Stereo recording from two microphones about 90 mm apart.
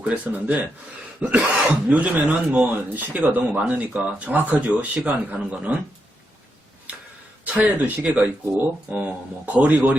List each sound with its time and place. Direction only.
0.0 s speech: 15° right (ahead or behind)
7.4 s speech: 15° right (ahead or behind)